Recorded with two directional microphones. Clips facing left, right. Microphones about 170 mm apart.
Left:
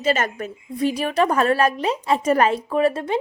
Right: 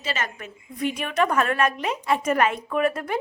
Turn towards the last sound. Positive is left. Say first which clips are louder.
# left 4 dB
turn(degrees=30)  # may be behind; listen again after turning